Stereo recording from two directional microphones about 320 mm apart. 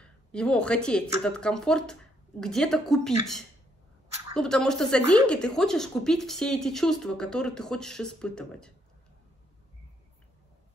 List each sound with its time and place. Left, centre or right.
0.0 s a woman's voice: centre
4.4 s a woman's voice: centre